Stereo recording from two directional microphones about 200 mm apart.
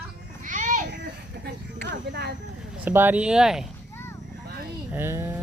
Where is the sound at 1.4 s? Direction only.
60° right (ahead or behind).